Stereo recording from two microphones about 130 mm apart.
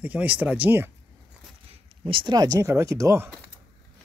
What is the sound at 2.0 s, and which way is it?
Speech, 40° right (ahead or behind).